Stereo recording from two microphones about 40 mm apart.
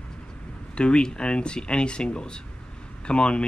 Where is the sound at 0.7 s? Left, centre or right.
Left.